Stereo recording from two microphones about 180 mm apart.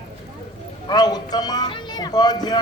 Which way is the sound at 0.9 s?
20° left (ahead or behind).